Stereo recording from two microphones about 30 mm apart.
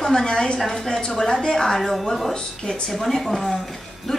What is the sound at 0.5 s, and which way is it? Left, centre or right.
A woman's voice, centre.